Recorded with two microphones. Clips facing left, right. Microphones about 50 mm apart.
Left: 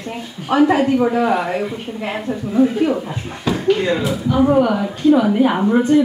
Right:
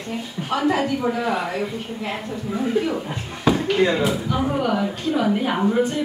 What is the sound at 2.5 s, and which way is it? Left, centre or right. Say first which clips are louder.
Speech: left 7 dB; centre.